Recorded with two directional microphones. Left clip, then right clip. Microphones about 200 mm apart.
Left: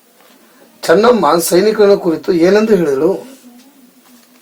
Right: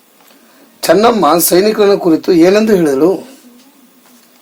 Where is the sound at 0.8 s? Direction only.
55° right (ahead or behind).